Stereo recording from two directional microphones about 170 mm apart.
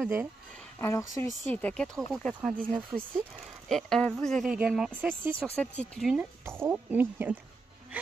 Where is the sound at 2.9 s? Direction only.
15° right (ahead or behind).